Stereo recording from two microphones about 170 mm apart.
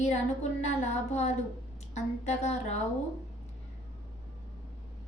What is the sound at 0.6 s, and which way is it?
A woman's voice, 40° left (ahead or behind).